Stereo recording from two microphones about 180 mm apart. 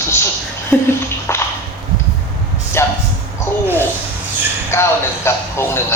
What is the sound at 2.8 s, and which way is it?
Speech, 15° left (ahead or behind).